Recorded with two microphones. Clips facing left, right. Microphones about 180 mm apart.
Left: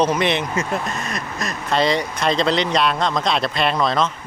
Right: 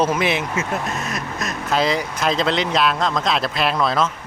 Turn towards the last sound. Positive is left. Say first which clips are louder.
# even
turn(degrees=-5)  # may be behind; listen again after turning